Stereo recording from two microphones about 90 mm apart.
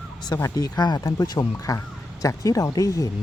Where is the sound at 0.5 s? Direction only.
45° left (ahead or behind).